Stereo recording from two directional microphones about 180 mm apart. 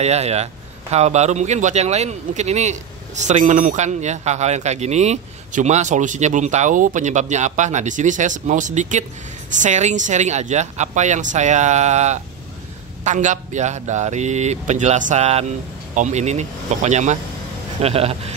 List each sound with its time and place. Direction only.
0.0 s a man's voice: 35° right (ahead or behind)